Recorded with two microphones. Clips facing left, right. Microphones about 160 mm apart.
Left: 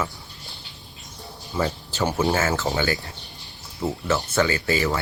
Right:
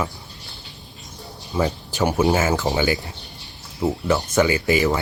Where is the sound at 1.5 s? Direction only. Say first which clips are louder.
Right 3 dB; 15° right (ahead or behind).